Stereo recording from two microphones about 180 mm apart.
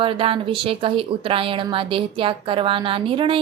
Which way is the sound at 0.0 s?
30° right (ahead or behind).